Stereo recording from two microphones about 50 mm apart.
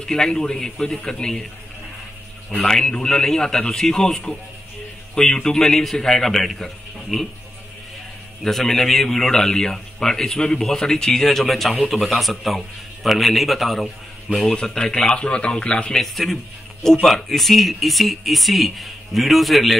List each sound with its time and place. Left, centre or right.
0.0 s a man's voice: centre
2.6 s a man's voice: centre
8.5 s a man's voice: centre
14.4 s a man's voice: centre
16.0 s speech: centre